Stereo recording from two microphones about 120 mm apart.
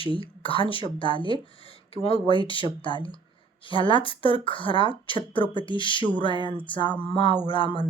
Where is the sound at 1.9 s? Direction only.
55° left (ahead or behind).